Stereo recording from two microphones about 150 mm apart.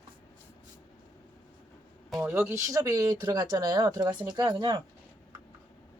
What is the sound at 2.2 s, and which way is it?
Speech, 15° right (ahead or behind).